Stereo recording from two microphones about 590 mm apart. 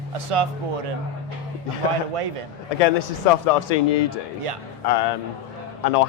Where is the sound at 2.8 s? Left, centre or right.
Left.